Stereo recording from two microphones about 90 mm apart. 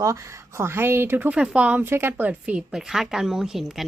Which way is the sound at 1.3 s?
10° right (ahead or behind).